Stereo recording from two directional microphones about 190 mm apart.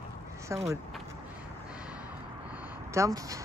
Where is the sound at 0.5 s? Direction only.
15° right (ahead or behind).